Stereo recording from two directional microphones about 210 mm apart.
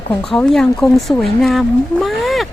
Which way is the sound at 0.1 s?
5° left (ahead or behind).